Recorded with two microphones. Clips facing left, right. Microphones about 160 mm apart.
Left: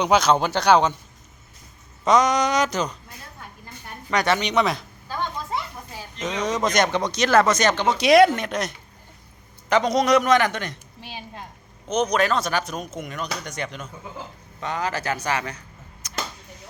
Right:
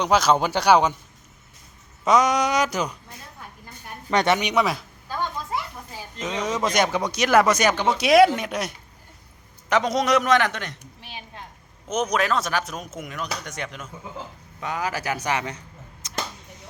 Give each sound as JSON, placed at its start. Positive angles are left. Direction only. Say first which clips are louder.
{"t": 0.0, "sound": "speech", "louder": "left 1 dB", "side_deg": 0}
{"t": 2.0, "sound": "speech", "louder": "left 1 dB", "side_deg": -5}
{"t": 4.1, "sound": "speech", "louder": "right 1 dB", "side_deg": -25}
{"t": 4.4, "sound": "a man's voice", "louder": "left 1 dB", "side_deg": -10}
{"t": 5.9, "sound": "a sound", "louder": "left 2 dB", "side_deg": -10}
{"t": 6.4, "sound": "speech", "louder": "left 1 dB", "side_deg": -5}
{"t": 11.0, "sound": "a sound", "louder": "left 3 dB", "side_deg": 40}
{"t": 11.9, "sound": "speech", "louder": "left 2 dB", "side_deg": -5}
{"t": 16.0, "sound": "arrow", "louder": "right 1 dB", "side_deg": -25}